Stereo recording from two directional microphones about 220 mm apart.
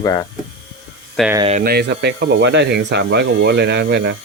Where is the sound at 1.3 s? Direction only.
25° right (ahead or behind).